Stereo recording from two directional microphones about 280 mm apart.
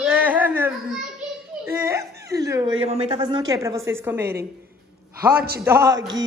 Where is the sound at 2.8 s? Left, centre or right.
Right.